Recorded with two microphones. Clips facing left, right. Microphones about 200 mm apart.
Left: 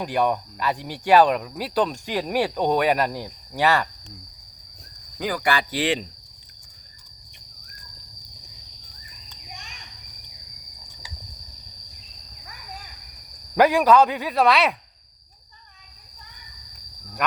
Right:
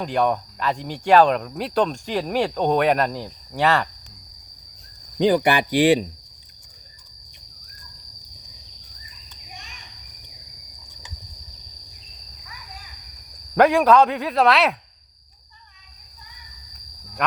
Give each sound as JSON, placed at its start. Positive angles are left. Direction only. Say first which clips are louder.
{"t": 0.0, "sound": "speech", "louder": "right 1 dB", "side_deg": 5}
{"t": 5.2, "sound": "speech", "louder": "right 7 dB", "side_deg": -25}
{"t": 13.6, "sound": "speech", "louder": "right 1 dB", "side_deg": 0}